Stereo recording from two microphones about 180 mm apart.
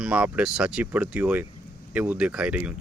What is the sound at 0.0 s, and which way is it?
Speech, 5° right (ahead or behind).